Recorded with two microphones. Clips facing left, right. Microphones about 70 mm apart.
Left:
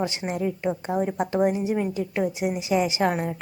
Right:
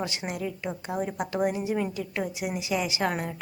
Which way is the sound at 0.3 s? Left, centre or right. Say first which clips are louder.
Left 6 dB; left.